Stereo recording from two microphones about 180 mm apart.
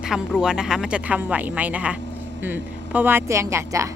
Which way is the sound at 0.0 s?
5° right (ahead or behind).